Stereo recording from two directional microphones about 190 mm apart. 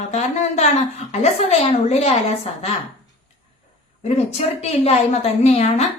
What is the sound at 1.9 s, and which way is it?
Speech, 30° left (ahead or behind).